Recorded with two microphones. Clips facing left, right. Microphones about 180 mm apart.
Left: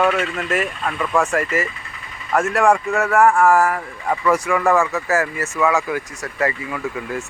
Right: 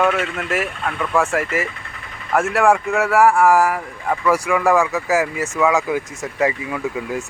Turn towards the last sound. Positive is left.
turn(degrees=-15)  # may be behind; listen again after turning